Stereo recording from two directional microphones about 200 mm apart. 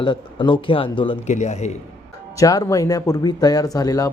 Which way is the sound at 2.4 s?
15° left (ahead or behind).